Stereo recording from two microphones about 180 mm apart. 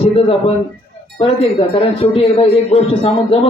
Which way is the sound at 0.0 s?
30° left (ahead or behind).